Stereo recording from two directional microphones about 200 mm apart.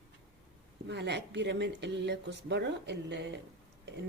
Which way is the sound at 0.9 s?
60° right (ahead or behind).